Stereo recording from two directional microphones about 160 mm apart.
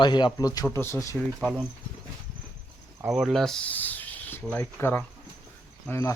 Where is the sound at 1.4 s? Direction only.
10° right (ahead or behind).